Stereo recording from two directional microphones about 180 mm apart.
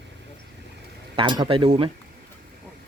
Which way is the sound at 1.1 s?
25° right (ahead or behind).